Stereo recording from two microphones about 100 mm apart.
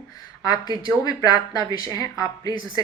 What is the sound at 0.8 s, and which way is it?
Speech, 40° left (ahead or behind).